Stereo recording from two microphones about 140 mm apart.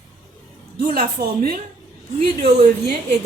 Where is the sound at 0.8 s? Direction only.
90° right.